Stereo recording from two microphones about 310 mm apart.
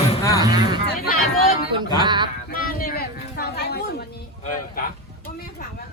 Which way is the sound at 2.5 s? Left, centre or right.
Left.